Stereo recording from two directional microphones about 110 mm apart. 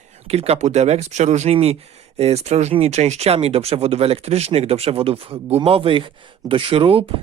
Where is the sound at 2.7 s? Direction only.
70° right (ahead or behind).